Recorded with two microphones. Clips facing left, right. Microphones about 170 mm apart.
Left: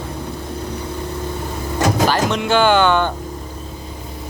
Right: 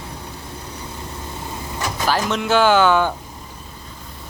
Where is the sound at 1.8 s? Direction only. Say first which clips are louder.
Left 10 dB; 90° left.